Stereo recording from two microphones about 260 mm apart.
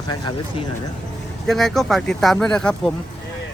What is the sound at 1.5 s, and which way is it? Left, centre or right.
Speech, centre.